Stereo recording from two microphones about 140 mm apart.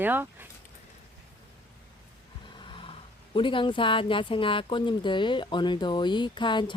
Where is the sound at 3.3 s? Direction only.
35° left (ahead or behind).